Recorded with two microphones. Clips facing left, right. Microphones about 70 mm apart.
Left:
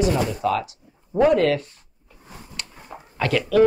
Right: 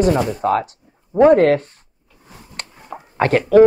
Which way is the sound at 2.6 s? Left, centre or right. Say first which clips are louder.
Right 6 dB; right.